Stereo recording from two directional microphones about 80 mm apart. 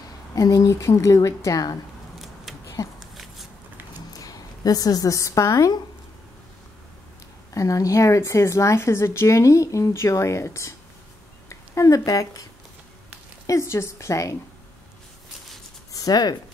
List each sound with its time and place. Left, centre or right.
0.3 s a woman's voice: left
2.1 s a sound: centre
4.2 s a woman's voice: left
7.5 s speech: left
13.5 s speech: left
15.9 s a sound: left